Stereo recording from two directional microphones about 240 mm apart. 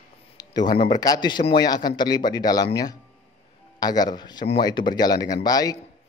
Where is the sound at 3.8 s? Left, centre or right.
Centre.